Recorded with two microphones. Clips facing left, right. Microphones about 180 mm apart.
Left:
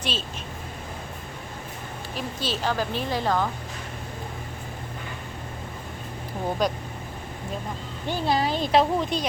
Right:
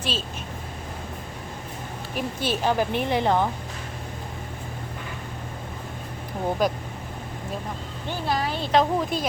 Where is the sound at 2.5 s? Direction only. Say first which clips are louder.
Right 4 dB; 15° right (ahead or behind).